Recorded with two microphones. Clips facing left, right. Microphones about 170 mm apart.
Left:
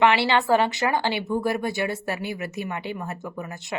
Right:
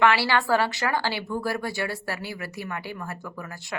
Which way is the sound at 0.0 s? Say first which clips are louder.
Left 2 dB; 20° left (ahead or behind).